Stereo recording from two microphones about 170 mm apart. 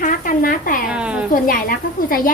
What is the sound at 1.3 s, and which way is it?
A woman's voice, 55° left (ahead or behind).